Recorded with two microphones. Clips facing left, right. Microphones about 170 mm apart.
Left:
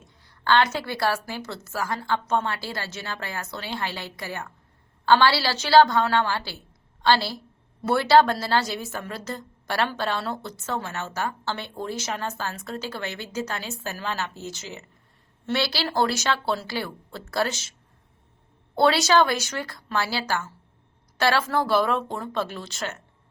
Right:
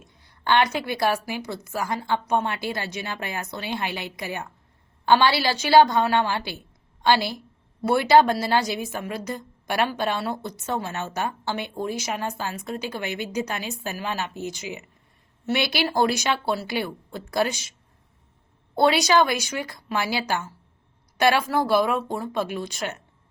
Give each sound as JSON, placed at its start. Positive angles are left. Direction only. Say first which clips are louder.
{"t": 0.0, "sound": "a woman's voice", "louder": "even", "side_deg": -20}
{"t": 18.8, "sound": "a woman's voice", "louder": "even", "side_deg": -15}